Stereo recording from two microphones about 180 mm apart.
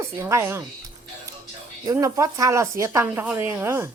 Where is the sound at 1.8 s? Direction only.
20° right (ahead or behind).